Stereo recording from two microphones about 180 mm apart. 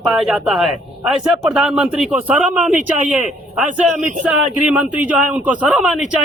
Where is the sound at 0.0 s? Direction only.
Centre (ahead or behind).